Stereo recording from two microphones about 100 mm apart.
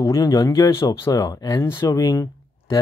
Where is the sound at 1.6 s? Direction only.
30° left (ahead or behind).